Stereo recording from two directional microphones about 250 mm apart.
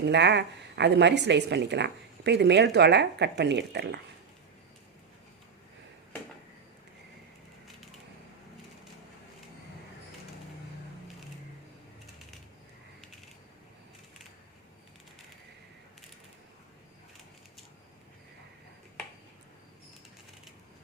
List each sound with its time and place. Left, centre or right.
0.0 s a woman's voice: right